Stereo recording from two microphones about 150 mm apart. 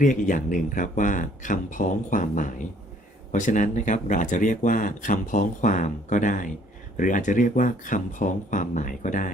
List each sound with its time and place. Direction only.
0.0 s speech: 60° left (ahead or behind)